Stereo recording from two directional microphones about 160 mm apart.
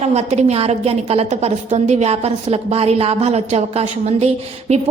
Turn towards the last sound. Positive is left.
turn(degrees=-40)  # may be behind; listen again after turning